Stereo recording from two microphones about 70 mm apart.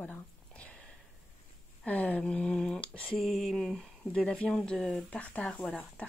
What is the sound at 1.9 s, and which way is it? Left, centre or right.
Speech, left.